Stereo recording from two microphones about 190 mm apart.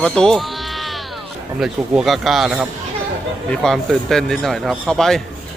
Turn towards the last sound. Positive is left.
turn(degrees=0)  # may be behind; listen again after turning